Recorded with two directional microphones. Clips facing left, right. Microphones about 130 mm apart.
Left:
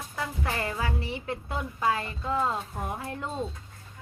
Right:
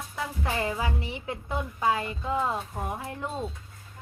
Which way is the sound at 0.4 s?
15° right (ahead or behind).